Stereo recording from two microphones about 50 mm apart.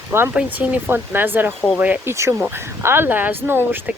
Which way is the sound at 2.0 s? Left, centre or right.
Right.